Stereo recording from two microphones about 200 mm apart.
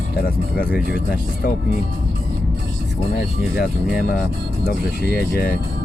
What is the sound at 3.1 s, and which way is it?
Speech, 50° left (ahead or behind).